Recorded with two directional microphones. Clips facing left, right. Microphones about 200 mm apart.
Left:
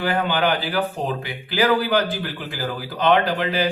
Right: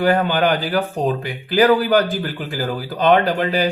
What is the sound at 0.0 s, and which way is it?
Speech, 45° right (ahead or behind).